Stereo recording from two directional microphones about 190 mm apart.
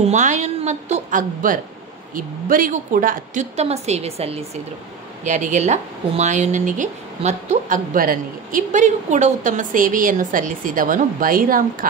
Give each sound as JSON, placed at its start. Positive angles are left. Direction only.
{"t": 0.0, "sound": "a woman's voice", "side_deg": -40}